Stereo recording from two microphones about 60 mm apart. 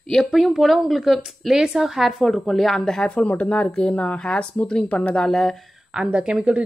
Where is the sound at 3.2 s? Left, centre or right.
Left.